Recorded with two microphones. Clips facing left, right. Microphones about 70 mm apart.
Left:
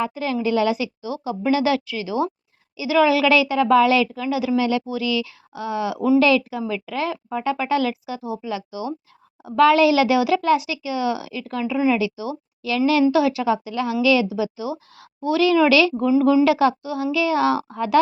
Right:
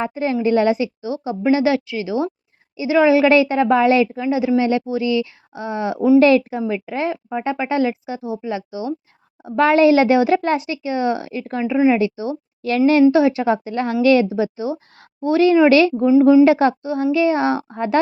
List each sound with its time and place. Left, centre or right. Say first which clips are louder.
0.0 s speech: right 3 dB; right
16.0 s speech: right 5 dB; right